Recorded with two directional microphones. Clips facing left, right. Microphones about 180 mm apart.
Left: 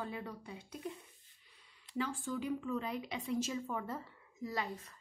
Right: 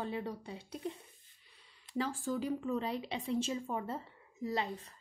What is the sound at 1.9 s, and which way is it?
A woman's voice, 40° right (ahead or behind).